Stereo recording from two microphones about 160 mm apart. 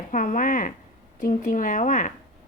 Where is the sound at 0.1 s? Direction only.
55° left (ahead or behind).